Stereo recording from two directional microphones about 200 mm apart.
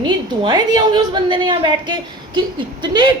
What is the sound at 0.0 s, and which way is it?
A woman's voice, 25° right (ahead or behind).